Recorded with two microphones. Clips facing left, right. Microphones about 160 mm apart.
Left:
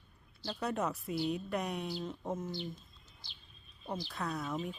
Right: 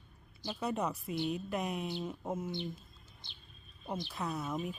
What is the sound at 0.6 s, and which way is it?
Speech, centre (ahead or behind).